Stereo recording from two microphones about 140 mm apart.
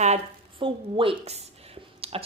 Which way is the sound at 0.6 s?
40° right (ahead or behind).